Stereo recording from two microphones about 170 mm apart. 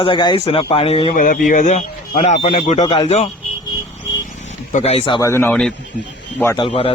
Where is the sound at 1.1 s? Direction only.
50° left (ahead or behind).